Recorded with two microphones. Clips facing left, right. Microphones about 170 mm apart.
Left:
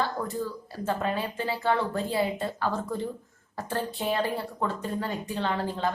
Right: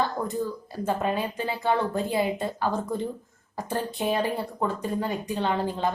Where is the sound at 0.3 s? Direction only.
20° right (ahead or behind).